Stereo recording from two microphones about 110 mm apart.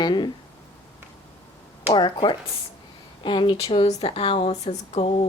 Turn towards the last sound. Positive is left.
turn(degrees=75)  # may be behind; listen again after turning